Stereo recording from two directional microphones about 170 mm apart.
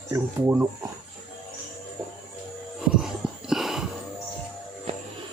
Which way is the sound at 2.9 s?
5° right (ahead or behind).